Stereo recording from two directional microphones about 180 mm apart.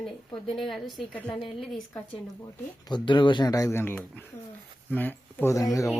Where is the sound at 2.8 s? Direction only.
25° left (ahead or behind).